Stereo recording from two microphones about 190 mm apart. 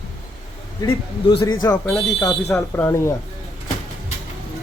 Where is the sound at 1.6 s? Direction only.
10° left (ahead or behind).